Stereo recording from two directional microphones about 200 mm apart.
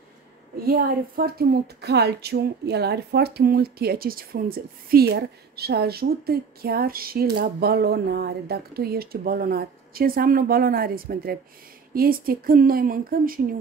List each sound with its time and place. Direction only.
0.7 s speech: 45° right (ahead or behind)